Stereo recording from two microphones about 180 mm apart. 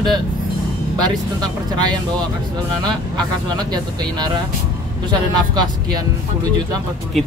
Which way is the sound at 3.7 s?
25° right (ahead or behind).